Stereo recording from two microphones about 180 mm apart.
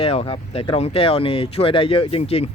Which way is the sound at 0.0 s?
35° left (ahead or behind).